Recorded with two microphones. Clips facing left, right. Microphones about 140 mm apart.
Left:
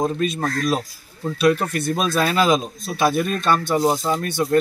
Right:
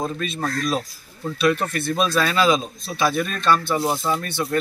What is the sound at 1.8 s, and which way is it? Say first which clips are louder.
A man's voice: left 1 dB; 45° left (ahead or behind).